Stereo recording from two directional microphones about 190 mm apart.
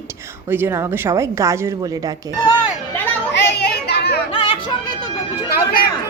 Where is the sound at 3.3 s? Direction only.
60° left (ahead or behind).